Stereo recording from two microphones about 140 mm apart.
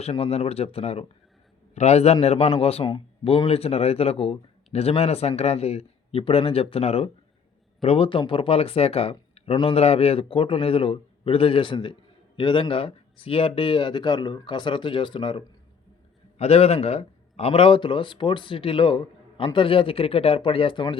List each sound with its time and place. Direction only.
0.0 s speech: 45° left (ahead or behind)